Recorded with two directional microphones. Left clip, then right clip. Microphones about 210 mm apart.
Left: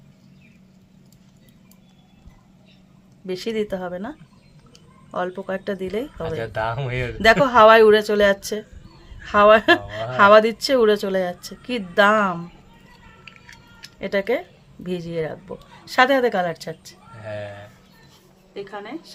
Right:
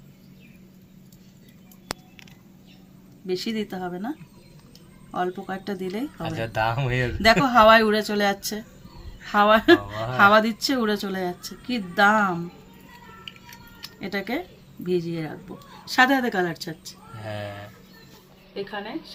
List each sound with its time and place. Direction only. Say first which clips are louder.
3.2 s a woman's voice: left 4 dB; 55° left (ahead or behind)
5.1 s a woman's voice: left 2 dB; 55° left (ahead or behind)
6.2 s speech: right 2 dB; 15° right (ahead or behind)
7.2 s a woman's voice: left 4 dB; 55° left (ahead or behind)
14.0 s a woman's voice: left 7 dB; 60° left (ahead or behind)
17.2 s a sound: left 2 dB; 15° right (ahead or behind)